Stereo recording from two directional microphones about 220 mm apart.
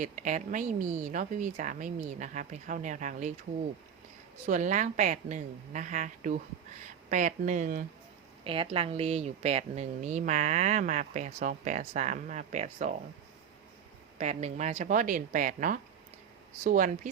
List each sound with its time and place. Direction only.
0.0 s a woman's voice: 35° right (ahead or behind)
4.4 s a woman's voice: 35° right (ahead or behind)
8.4 s a woman's voice: 25° right (ahead or behind)
14.2 s a woman's voice: 30° right (ahead or behind)